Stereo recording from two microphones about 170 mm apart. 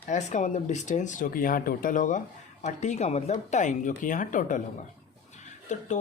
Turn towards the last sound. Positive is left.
turn(degrees=45)  # may be behind; listen again after turning